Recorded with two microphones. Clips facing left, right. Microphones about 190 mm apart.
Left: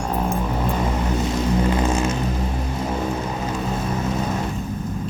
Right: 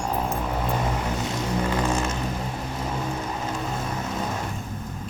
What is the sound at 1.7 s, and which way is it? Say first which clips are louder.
Vehicle: left 4 dB; 20° left (ahead or behind).